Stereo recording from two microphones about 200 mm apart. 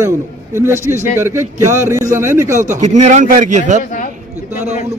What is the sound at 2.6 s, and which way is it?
Speech, 35° right (ahead or behind).